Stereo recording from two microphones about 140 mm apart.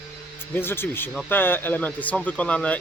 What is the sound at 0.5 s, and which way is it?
Speech, 15° left (ahead or behind).